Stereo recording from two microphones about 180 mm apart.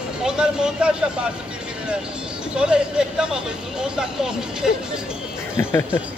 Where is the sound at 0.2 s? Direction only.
5° right (ahead or behind).